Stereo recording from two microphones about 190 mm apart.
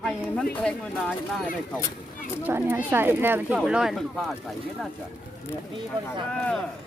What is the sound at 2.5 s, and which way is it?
Speech, 10° right (ahead or behind).